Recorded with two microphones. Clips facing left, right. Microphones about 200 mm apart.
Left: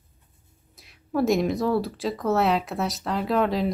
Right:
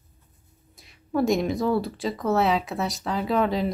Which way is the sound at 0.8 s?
Centre (ahead or behind).